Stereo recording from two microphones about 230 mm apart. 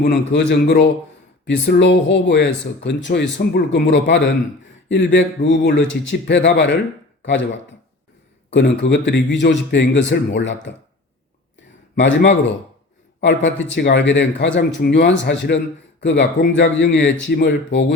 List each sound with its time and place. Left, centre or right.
0.0 s a man's voice: left
8.4 s a man's voice: left
11.9 s a man's voice: left